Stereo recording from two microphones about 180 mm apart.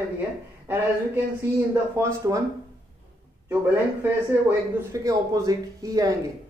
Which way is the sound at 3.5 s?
10° right (ahead or behind).